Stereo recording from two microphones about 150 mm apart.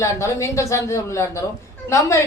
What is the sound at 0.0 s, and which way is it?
A woman's voice, 20° left (ahead or behind).